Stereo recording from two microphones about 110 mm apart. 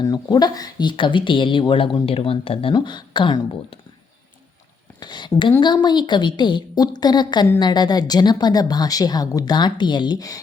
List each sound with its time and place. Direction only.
0.0 s speech: 35° left (ahead or behind); by 2.7 s 60° left (ahead or behind)
2.7 s speech: 40° left (ahead or behind)
4.9 s a woman's voice: 40° left (ahead or behind)